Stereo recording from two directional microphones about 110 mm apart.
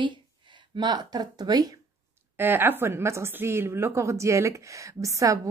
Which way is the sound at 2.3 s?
20° right (ahead or behind).